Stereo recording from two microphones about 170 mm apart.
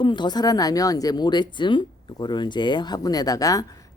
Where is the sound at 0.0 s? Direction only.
25° left (ahead or behind).